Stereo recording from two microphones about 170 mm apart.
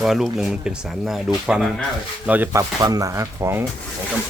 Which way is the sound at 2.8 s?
20° right (ahead or behind).